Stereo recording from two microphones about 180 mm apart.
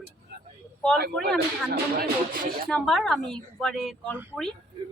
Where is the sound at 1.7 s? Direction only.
55° right (ahead or behind).